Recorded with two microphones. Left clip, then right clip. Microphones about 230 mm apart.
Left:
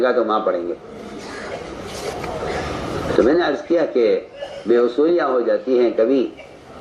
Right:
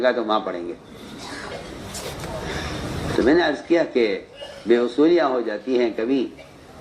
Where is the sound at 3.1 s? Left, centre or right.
Right.